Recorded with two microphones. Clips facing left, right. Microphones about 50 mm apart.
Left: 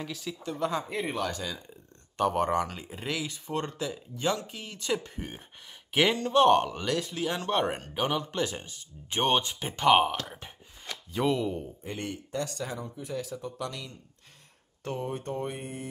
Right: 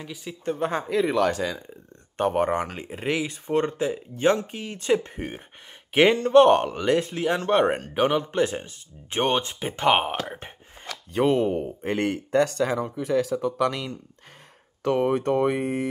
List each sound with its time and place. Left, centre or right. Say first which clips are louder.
0.2 s speech: right 6 dB; right
0.8 s speech: right 9 dB; right
2.1 s speech: right 3 dB; right
6.1 s a man's voice: right 5 dB; right
11.1 s speech: right 7 dB; right
11.8 s speech: right 11 dB; right
14.9 s speech: right 12 dB; right